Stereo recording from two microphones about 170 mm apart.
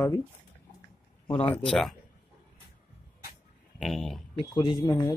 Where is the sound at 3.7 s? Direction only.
Centre (ahead or behind).